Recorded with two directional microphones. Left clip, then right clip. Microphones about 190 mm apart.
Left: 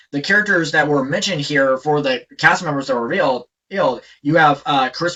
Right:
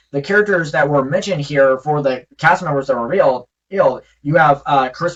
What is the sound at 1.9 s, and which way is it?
Speech, 20° left (ahead or behind).